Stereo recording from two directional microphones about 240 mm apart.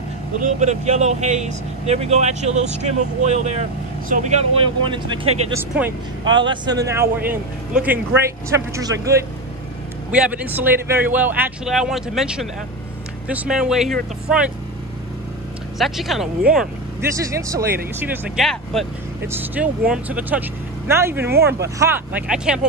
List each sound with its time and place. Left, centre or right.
0.4 s speech: right
5.5 s speech: centre
15.8 s speech: centre